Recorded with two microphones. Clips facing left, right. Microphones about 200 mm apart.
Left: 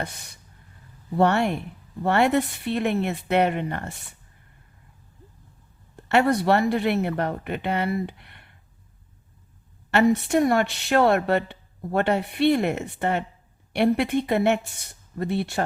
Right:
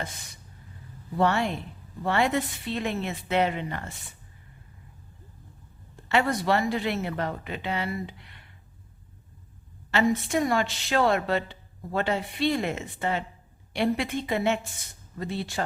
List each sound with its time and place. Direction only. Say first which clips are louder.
1.1 s a woman's voice: left 4 dB; 60° left (ahead or behind)
6.1 s a woman's voice: left 5 dB; 60° left (ahead or behind)
9.9 s a woman's voice: left 5 dB; 60° left (ahead or behind)